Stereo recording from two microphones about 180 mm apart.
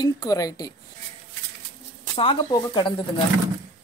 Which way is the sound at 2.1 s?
25° left (ahead or behind).